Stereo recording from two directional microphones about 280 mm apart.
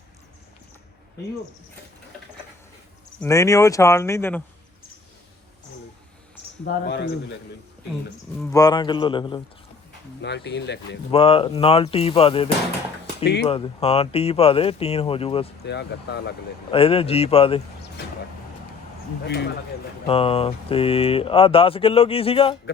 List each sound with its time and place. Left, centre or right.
3.2 s speech: centre
6.7 s speech: left
8.5 s speech: centre
10.2 s speech: left
11.1 s speech: centre
13.5 s speech: centre
15.6 s speech: left
16.7 s speech: centre
20.1 s speech: centre